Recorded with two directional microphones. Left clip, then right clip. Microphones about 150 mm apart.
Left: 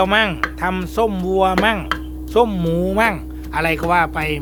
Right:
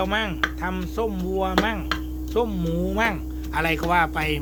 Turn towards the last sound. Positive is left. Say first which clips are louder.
# left 4 dB
turn(degrees=20)  # may be behind; listen again after turning